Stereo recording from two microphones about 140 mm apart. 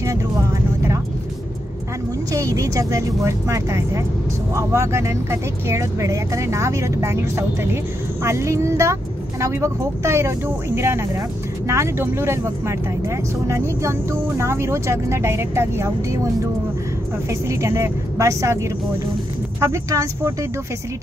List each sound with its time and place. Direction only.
2.3 s speech: 25° right (ahead or behind)
17.3 s speech: 20° right (ahead or behind)